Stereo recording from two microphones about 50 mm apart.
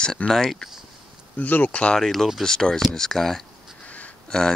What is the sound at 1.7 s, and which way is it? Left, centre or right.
Speech, left.